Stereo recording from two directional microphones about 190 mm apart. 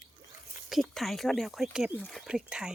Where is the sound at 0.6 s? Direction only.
Centre (ahead or behind).